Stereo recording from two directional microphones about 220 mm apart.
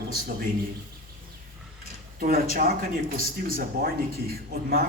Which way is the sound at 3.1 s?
40° right (ahead or behind).